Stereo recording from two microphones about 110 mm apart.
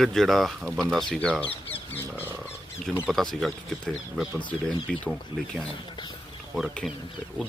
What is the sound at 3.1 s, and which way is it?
Speech, centre (ahead or behind).